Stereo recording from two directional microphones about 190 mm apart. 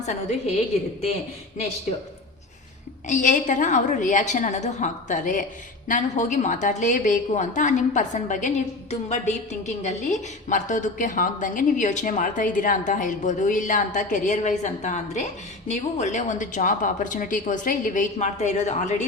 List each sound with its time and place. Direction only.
0.0 s a woman's voice: 35° left (ahead or behind)
3.1 s a woman's voice: 40° left (ahead or behind)